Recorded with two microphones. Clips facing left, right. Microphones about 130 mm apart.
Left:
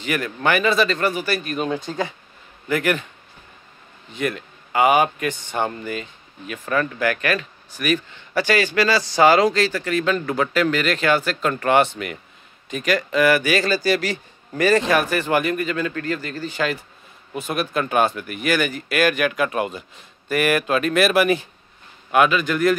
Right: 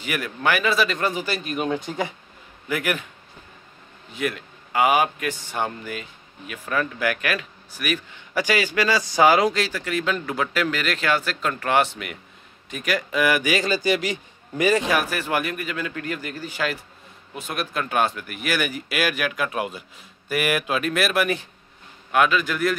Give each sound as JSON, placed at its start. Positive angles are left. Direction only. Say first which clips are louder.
{"t": 0.0, "sound": "speech", "louder": "left 2 dB", "side_deg": -5}
{"t": 4.1, "sound": "speech", "louder": "left 2 dB", "side_deg": -5}